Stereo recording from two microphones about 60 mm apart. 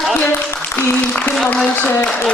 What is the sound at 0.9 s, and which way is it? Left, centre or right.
A woman's voice, left.